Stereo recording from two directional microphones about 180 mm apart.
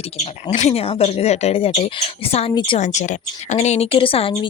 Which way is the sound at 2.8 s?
40° left (ahead or behind).